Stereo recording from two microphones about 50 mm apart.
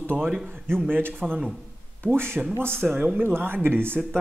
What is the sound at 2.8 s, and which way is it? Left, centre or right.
Speech, centre.